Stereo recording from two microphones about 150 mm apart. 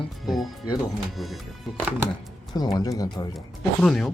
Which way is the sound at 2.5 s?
25° left (ahead or behind).